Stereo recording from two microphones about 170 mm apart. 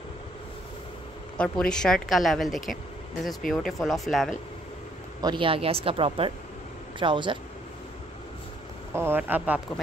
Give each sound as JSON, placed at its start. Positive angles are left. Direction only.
{"t": 1.4, "sound": "speech", "side_deg": 5}
{"t": 5.2, "sound": "speech", "side_deg": -30}
{"t": 8.9, "sound": "speech", "side_deg": -10}